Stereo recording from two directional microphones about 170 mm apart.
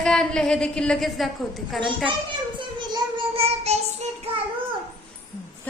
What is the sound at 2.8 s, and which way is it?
Child singing, 25° right (ahead or behind).